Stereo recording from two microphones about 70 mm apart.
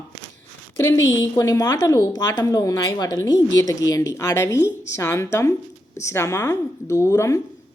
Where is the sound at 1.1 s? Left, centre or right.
Left.